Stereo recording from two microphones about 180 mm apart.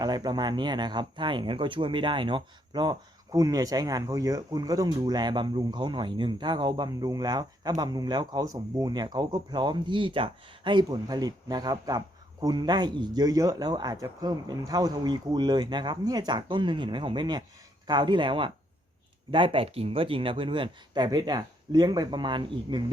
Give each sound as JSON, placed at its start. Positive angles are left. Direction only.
{"t": 0.0, "sound": "speech", "side_deg": -20}